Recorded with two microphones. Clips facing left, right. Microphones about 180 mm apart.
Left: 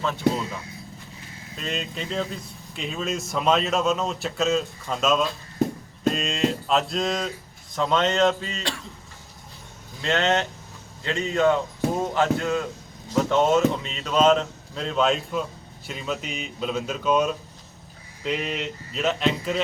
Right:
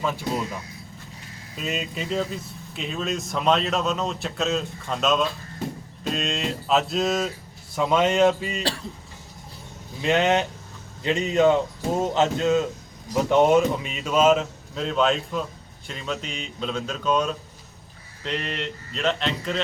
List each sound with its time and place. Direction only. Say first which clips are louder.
0.0 s speech: left 3 dB; 10° right (ahead or behind)
10.0 s speech: right 2 dB; 15° right (ahead or behind); by 19.6 s 5° left (ahead or behind)